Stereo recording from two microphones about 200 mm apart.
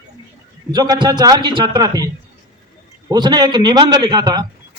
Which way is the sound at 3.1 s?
20° right (ahead or behind).